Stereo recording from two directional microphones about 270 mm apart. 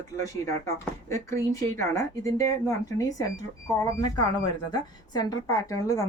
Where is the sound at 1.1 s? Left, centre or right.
Centre.